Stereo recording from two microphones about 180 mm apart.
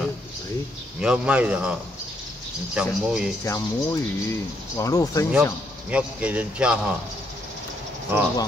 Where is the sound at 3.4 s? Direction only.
15° left (ahead or behind).